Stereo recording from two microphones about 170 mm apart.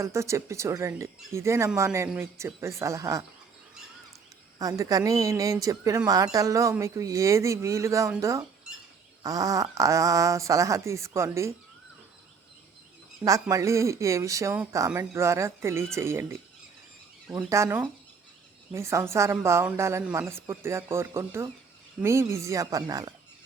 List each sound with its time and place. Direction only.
0.0 s speech: 15° right (ahead or behind)
4.5 s speech: 20° right (ahead or behind)
13.2 s speech: 20° right (ahead or behind)